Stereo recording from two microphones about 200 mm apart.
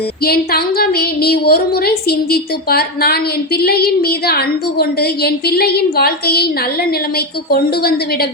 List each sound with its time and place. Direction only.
0.3 s a woman's voice: 50° left (ahead or behind)
7.5 s a woman's voice: 50° left (ahead or behind)